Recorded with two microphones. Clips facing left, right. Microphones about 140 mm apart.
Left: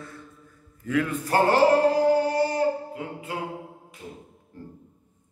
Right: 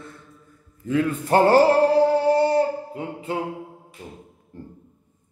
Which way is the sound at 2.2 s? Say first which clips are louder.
Right 5 dB; 25° right (ahead or behind).